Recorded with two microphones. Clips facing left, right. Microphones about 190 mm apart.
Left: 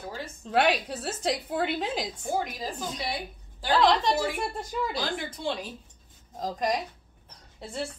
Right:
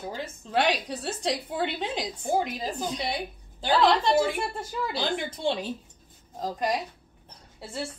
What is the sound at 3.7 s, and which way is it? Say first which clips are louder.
Speech: right 1 dB; 5° right (ahead or behind).